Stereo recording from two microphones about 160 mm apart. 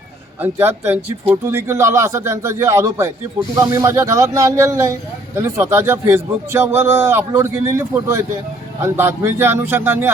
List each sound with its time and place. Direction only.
0.4 s speech: 15° right (ahead or behind)